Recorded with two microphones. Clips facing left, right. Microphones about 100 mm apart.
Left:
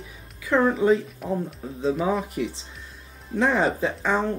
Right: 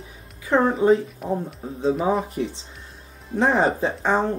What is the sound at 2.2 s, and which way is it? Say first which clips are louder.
Speech: right 1 dB; 35° right (ahead or behind).